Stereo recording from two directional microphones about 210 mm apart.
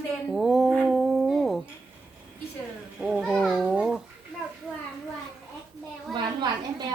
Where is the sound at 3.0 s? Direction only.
5° right (ahead or behind).